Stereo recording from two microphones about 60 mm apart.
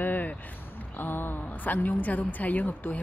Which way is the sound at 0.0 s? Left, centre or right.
Left.